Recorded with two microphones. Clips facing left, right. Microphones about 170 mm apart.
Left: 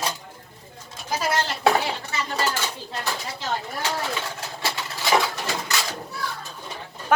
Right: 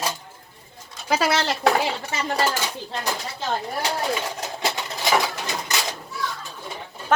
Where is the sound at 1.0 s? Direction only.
80° right.